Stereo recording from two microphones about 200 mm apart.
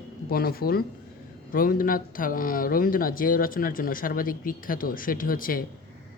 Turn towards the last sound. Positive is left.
turn(degrees=45)  # may be behind; listen again after turning